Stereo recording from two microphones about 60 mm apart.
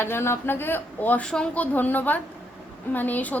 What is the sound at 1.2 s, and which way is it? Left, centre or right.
Speech, centre.